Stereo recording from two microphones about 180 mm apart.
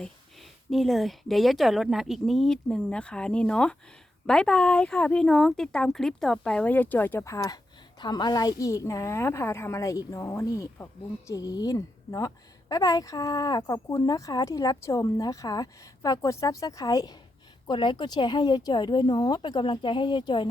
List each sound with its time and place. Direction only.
0.0 s a woman's voice: centre (ahead or behind); by 20.5 s 25° left (ahead or behind)